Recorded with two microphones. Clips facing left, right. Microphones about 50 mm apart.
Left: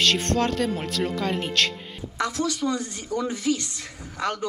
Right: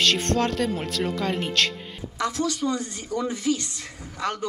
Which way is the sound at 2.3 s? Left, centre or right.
Right.